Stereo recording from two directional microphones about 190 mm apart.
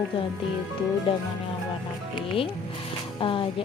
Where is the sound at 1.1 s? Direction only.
30° left (ahead or behind).